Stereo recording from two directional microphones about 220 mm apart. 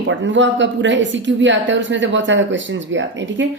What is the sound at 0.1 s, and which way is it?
Speech, 55° right (ahead or behind).